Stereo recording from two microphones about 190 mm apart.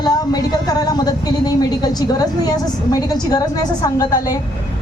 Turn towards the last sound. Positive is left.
turn(degrees=20)  # may be behind; listen again after turning